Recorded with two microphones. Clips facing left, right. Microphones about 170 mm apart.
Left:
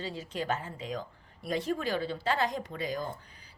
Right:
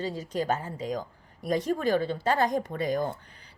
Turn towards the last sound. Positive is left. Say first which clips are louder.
# right 6 dB
turn(degrees=-55)  # may be behind; listen again after turning